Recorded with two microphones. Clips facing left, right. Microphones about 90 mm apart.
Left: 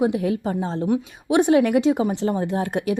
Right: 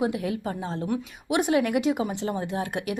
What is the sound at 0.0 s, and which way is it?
A woman's voice, 30° left (ahead or behind).